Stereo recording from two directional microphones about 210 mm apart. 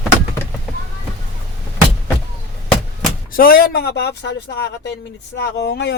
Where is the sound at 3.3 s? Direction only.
45° left (ahead or behind).